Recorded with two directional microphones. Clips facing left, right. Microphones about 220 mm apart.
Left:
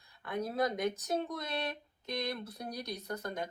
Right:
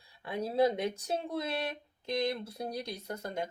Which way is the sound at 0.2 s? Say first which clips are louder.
Right 5 dB; 30° right (ahead or behind).